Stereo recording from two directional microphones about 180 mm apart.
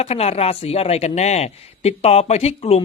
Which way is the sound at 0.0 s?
35° left (ahead or behind).